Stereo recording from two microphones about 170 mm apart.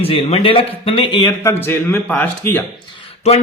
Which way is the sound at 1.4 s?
15° left (ahead or behind).